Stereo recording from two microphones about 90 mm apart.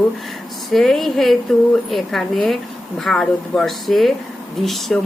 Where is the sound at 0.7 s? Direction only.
Centre (ahead or behind).